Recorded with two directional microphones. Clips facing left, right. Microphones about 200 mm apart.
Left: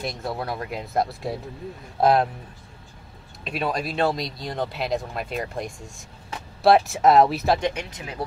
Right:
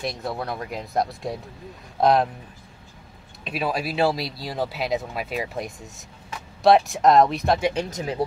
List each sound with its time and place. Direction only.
0.0 s speech: centre (ahead or behind)
3.4 s speech: centre (ahead or behind)
7.7 s speech: 35° right (ahead or behind)